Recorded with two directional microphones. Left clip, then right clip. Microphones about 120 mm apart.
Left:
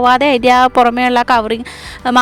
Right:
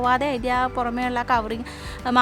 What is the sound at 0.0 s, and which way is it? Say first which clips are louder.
Speech: left 11 dB; 90° left.